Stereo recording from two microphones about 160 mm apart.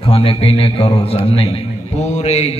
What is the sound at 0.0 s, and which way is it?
A man's voice, 35° left (ahead or behind).